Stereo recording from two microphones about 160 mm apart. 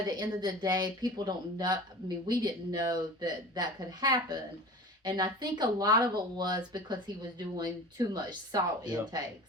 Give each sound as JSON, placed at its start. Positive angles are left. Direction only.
{"t": 0.1, "sound": "speech", "side_deg": -25}